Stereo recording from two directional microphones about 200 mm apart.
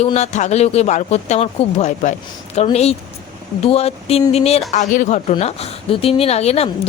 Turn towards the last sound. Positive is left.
turn(degrees=30)  # may be behind; listen again after turning